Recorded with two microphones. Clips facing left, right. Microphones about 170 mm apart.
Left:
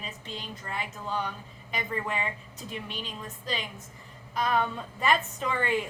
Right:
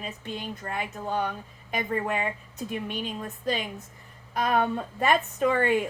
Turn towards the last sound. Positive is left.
turn(degrees=-50)  # may be behind; listen again after turning